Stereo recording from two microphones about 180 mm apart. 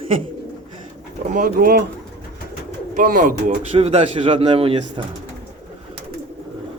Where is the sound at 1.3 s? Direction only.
50° right (ahead or behind).